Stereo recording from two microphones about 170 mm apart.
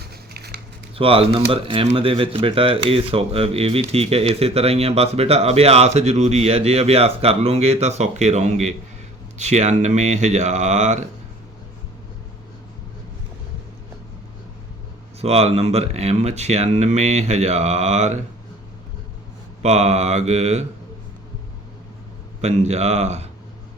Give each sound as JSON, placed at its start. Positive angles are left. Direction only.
{"t": 0.0, "sound": "a sound", "side_deg": -70}
{"t": 0.9, "sound": "speech", "side_deg": -35}
{"t": 15.2, "sound": "speech", "side_deg": -35}
{"t": 19.6, "sound": "speech", "side_deg": -40}
{"t": 22.4, "sound": "speech", "side_deg": -40}